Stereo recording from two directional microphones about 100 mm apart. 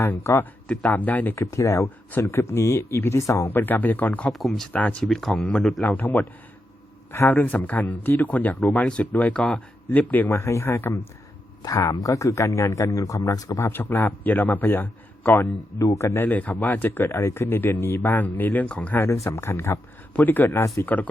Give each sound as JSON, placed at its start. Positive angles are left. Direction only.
{"t": 0.0, "sound": "speech", "side_deg": 20}
{"t": 1.4, "sound": "speech", "side_deg": 30}
{"t": 3.5, "sound": "speech", "side_deg": 20}
{"t": 4.3, "sound": "speech", "side_deg": 0}
{"t": 4.7, "sound": "speech", "side_deg": 15}
{"t": 5.0, "sound": "speech", "side_deg": 5}
{"t": 5.9, "sound": "speech", "side_deg": 15}
{"t": 11.8, "sound": "speech", "side_deg": 35}
{"t": 13.7, "sound": "speech", "side_deg": 20}
{"t": 15.8, "sound": "speech", "side_deg": 30}
{"t": 19.0, "sound": "speech", "side_deg": 30}
{"t": 20.8, "sound": "speech", "side_deg": 15}